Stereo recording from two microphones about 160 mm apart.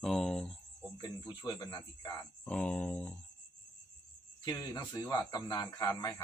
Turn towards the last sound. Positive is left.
turn(degrees=20)  # may be behind; listen again after turning